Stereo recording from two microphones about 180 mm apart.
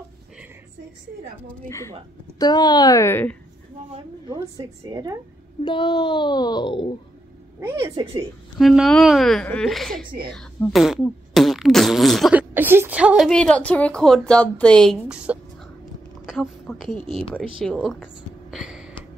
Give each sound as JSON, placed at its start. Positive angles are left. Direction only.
{"t": 1.7, "sound": "speech", "side_deg": 15}
{"t": 4.4, "sound": "a woman's voice", "side_deg": -20}
{"t": 5.6, "sound": "speech", "side_deg": 30}
{"t": 7.6, "sound": "a woman's voice", "side_deg": -20}
{"t": 8.5, "sound": "speech", "side_deg": 0}
{"t": 16.3, "sound": "a sound", "side_deg": 0}